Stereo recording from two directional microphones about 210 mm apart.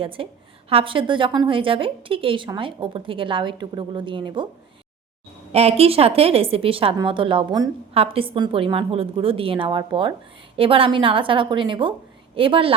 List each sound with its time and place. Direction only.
0.0 s a woman's voice: 25° right (ahead or behind)
5.5 s a woman's voice: 30° right (ahead or behind)